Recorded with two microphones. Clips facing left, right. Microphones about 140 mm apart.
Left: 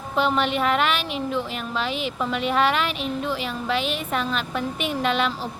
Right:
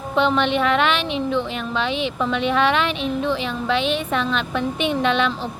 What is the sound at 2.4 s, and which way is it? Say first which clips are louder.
Speech: right 2 dB; 40° left (ahead or behind).